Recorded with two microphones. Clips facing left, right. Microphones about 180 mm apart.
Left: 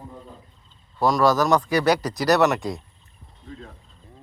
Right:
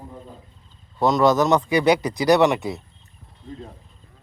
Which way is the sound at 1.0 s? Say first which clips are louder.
Right 2 dB; 20° right (ahead or behind).